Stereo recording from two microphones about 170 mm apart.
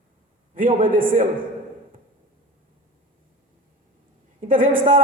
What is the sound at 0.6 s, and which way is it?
Speech, 55° right (ahead or behind).